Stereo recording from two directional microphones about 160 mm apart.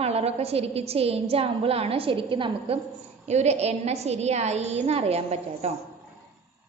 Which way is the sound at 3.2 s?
45° right (ahead or behind).